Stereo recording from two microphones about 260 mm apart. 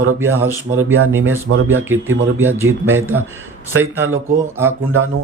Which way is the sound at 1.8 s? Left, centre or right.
Centre.